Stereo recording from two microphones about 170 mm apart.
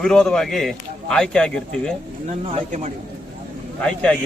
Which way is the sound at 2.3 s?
40° right (ahead or behind).